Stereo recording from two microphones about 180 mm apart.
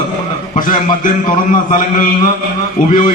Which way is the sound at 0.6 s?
50° left (ahead or behind).